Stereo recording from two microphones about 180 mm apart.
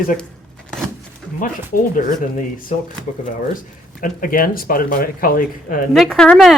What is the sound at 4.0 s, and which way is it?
Speech, 50° left (ahead or behind).